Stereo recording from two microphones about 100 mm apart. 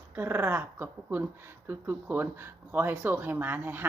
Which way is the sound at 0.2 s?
25° right (ahead or behind).